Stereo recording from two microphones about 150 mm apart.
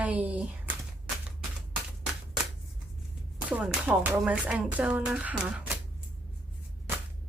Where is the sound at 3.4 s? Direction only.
10° right (ahead or behind).